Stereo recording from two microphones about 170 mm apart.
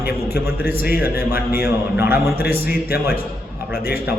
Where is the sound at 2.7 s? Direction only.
65° left (ahead or behind).